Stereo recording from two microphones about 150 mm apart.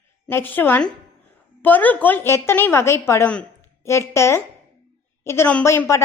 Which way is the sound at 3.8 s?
20° left (ahead or behind).